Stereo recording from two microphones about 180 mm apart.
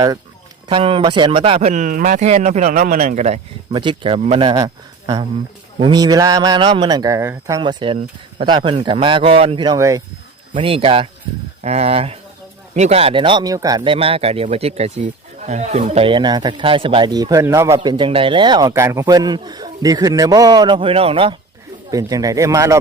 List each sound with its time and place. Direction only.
0.7 s a man's voice: 30° right (ahead or behind)
1.7 s a man's voice: 45° right (ahead or behind)
3.8 s a man's voice: 30° right (ahead or behind)
10.5 s a man's voice: 30° right (ahead or behind)
17.7 s a man's voice: 25° right (ahead or behind)
21.8 s a man's voice: 20° right (ahead or behind)